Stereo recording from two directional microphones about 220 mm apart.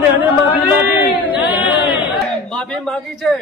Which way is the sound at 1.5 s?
20° left (ahead or behind).